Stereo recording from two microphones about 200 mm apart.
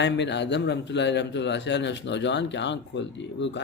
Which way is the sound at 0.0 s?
60° left (ahead or behind).